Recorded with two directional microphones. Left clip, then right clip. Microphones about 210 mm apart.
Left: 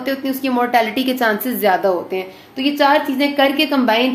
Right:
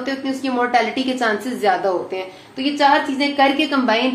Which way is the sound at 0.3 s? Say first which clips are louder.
Left 1 dB; 50° left (ahead or behind).